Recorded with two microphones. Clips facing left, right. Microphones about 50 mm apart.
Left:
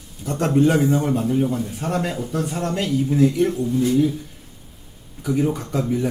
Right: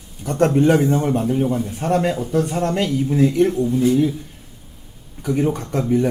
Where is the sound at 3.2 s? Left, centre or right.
Centre.